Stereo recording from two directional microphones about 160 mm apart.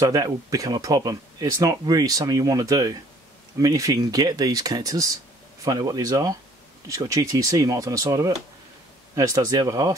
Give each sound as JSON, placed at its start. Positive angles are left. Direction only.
{"t": 0.0, "sound": "speech", "side_deg": -20}